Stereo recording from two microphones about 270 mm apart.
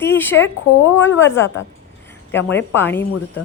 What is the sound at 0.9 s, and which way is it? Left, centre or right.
Speech, left.